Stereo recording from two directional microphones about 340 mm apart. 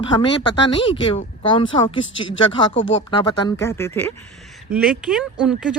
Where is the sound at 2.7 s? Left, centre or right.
Left.